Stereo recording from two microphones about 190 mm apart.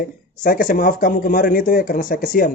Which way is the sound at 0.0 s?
50° left (ahead or behind).